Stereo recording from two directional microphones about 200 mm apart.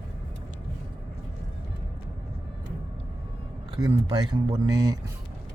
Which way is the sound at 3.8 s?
20° right (ahead or behind).